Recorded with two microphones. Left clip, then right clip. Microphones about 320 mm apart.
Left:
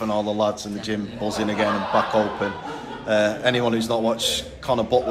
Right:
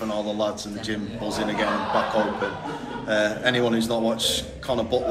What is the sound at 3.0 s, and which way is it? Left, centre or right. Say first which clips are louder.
A man's voice: left 3 dB; centre.